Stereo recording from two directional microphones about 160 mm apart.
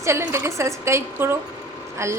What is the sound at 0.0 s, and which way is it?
Speech, 15° right (ahead or behind).